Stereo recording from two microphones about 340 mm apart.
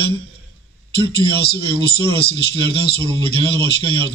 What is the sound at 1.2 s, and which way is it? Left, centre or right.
Speech, left.